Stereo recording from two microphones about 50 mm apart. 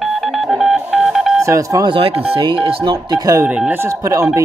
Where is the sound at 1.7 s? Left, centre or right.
Right.